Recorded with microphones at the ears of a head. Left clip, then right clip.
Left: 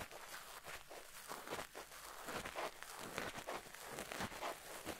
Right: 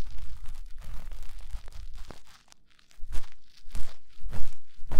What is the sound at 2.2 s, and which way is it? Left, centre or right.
Walk, left.